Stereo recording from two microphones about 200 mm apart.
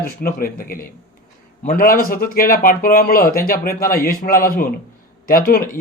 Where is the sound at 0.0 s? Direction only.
45° left (ahead or behind).